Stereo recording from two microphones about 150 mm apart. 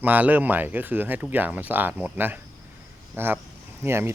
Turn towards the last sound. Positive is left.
turn(degrees=-15)  # may be behind; listen again after turning